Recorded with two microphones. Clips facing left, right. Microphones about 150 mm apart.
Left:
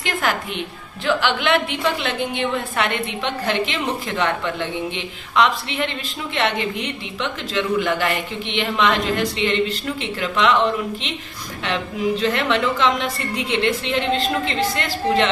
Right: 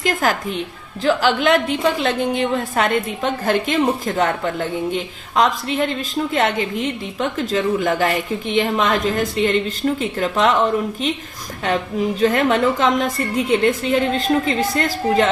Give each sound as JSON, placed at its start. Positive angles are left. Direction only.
{"t": 0.0, "sound": "a woman's voice", "side_deg": -40}
{"t": 11.6, "sound": "a woman's voice", "side_deg": -45}